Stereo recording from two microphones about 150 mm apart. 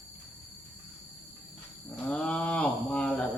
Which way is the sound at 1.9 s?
5° left (ahead or behind).